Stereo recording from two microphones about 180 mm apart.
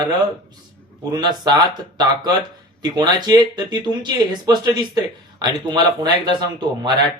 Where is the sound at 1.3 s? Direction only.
20° right (ahead or behind).